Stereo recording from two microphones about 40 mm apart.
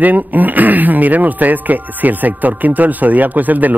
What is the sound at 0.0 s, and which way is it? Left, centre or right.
Speech, right.